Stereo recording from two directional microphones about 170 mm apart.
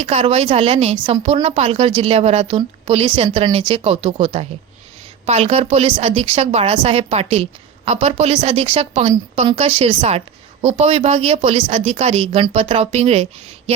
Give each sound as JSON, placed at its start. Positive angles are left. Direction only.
{"t": 0.0, "sound": "a woman's voice", "side_deg": -35}